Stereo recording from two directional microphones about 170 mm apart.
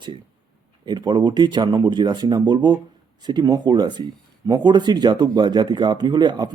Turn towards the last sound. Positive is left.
turn(degrees=-25)  # may be behind; listen again after turning